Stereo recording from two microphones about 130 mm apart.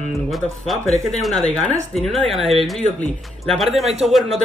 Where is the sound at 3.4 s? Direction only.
Centre (ahead or behind).